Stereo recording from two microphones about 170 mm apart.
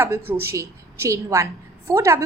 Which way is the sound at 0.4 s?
15° right (ahead or behind).